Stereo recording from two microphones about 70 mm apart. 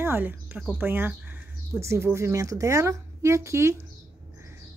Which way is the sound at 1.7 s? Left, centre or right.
Right.